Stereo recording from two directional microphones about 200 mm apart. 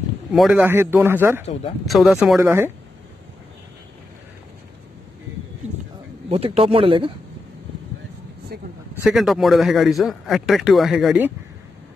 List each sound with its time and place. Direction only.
0.3 s a man's voice: 5° right (ahead or behind)
6.2 s speech: 30° right (ahead or behind)
8.5 s speech: 50° right (ahead or behind)
9.0 s a man's voice: centre (ahead or behind)